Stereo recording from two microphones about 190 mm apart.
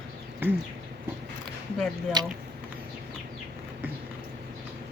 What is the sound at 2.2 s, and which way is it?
Speech, 20° right (ahead or behind).